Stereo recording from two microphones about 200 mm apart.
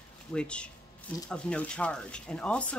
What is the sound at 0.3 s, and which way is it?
Speech, 5° left (ahead or behind).